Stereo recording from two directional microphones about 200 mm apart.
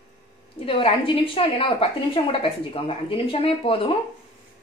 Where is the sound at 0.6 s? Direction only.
25° left (ahead or behind).